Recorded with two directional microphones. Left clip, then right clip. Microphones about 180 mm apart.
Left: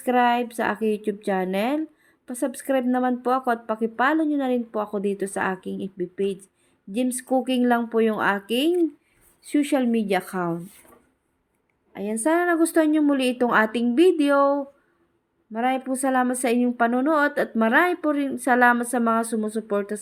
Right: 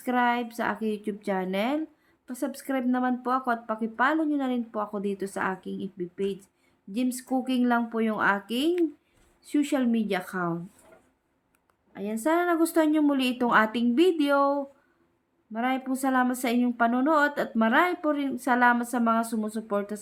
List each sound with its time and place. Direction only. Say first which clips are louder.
0.0 s a woman's voice: left 5 dB; 15° left (ahead or behind)
11.9 s a woman's voice: left 4 dB; 20° left (ahead or behind)